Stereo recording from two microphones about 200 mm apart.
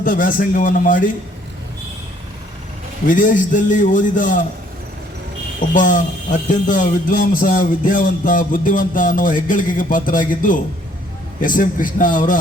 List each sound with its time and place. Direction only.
0.0 s a man's voice: 40° left (ahead or behind)
3.1 s speech: 40° left (ahead or behind)
5.7 s a man's voice: 40° left (ahead or behind)